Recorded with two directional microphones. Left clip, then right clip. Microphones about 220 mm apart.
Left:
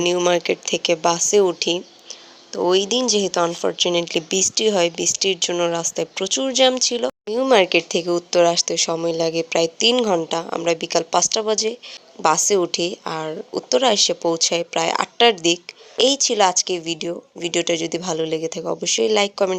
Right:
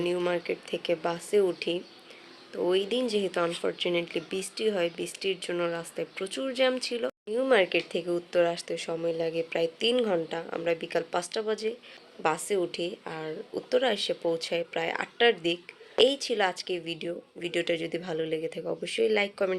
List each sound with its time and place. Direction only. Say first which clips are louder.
0.0 s speech: left 11 dB; 35° left (ahead or behind)